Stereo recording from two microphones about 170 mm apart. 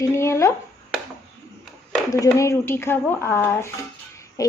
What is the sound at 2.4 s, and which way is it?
A woman's voice, 15° left (ahead or behind).